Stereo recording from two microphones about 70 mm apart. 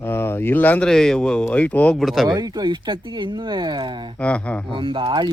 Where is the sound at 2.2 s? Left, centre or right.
Right.